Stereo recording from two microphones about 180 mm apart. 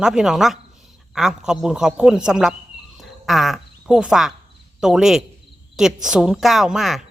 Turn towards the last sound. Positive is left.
turn(degrees=0)  # may be behind; listen again after turning